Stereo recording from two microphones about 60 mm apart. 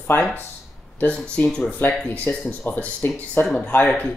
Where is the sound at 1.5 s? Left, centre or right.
Centre.